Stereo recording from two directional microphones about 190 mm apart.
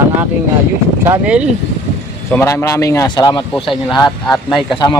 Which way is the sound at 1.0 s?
10° right (ahead or behind).